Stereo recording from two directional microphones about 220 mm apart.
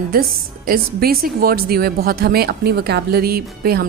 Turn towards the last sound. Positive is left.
turn(degrees=-45)  # may be behind; listen again after turning